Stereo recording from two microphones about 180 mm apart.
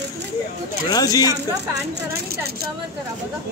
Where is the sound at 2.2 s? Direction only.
60° right (ahead or behind).